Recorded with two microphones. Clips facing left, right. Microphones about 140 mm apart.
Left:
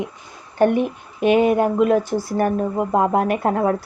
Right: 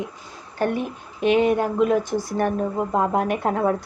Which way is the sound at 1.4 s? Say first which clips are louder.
Left 3 dB; 5° left (ahead or behind).